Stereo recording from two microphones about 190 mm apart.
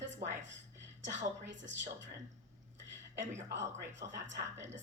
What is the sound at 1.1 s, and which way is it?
Speech, 75° right (ahead or behind).